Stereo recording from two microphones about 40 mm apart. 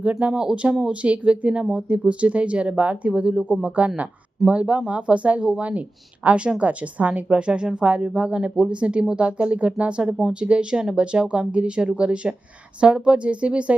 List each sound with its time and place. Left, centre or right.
0.0 s speech: right
7.3 s speech: right